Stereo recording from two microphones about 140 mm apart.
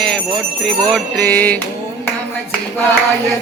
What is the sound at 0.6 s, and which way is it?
Bell, 5° left (ahead or behind).